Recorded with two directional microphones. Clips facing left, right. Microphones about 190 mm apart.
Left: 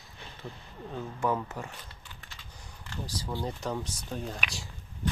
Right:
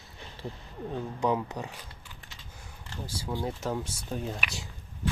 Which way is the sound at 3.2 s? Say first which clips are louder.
Right 3 dB; 5° right (ahead or behind).